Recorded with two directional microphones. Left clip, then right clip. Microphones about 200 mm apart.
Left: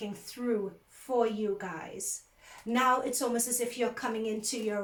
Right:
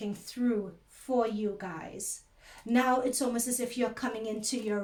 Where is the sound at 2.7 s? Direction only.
45° right (ahead or behind).